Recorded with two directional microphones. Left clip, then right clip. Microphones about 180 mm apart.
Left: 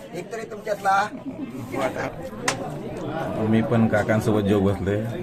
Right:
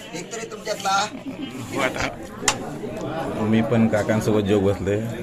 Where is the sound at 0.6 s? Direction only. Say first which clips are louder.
Left 1 dB; 30° left (ahead or behind).